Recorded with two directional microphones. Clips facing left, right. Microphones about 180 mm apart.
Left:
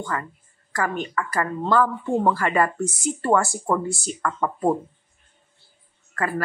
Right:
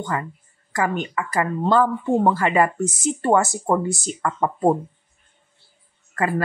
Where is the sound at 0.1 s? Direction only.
20° right (ahead or behind).